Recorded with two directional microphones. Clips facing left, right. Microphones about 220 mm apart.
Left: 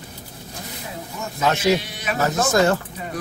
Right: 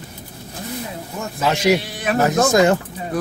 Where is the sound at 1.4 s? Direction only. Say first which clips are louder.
Right 2 dB; 10° right (ahead or behind).